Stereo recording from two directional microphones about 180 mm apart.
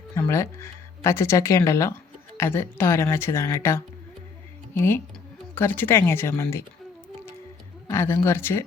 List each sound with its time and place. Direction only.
0.1 s speech: 15° left (ahead or behind)
7.9 s speech: 15° left (ahead or behind)